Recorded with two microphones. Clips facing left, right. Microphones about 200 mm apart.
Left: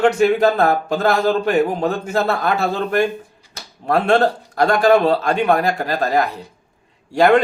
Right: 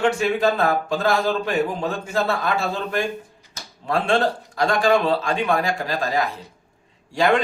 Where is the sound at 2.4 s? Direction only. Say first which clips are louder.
Left 5 dB; 60° left (ahead or behind).